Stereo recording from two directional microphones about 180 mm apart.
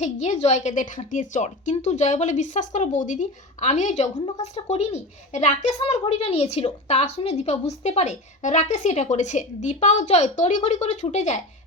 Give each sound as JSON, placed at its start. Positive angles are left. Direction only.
{"t": 0.0, "sound": "speech", "side_deg": 40}